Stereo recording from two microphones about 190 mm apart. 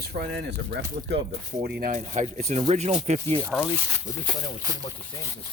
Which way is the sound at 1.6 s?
50° right (ahead or behind).